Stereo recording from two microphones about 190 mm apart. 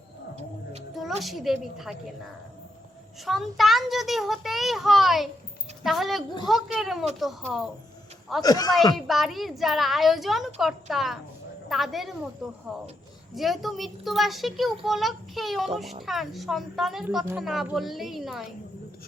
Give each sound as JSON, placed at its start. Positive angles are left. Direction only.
{"t": 1.2, "sound": "a child's voice", "side_deg": 0}
{"t": 3.2, "sound": "a child's voice", "side_deg": 0}
{"t": 8.4, "sound": "speech", "side_deg": 20}
{"t": 9.0, "sound": "a child's voice", "side_deg": 0}